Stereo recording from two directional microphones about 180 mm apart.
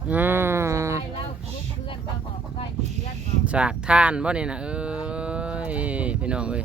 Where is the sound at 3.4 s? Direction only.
5° right (ahead or behind).